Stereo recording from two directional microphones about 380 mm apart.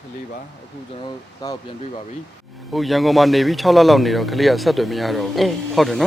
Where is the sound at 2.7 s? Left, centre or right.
Centre.